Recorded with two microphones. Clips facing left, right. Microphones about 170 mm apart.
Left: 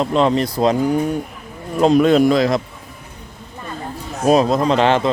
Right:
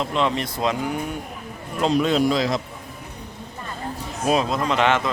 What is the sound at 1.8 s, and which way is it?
Speech, 50° left (ahead or behind).